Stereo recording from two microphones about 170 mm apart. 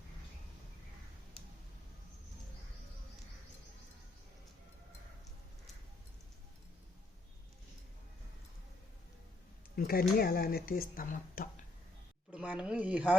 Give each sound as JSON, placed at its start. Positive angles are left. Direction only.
{"t": 9.7, "sound": "speech", "side_deg": 60}
{"t": 12.3, "sound": "speech", "side_deg": -5}